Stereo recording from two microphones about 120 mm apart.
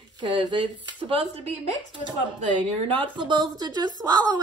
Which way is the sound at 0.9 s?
50° right (ahead or behind).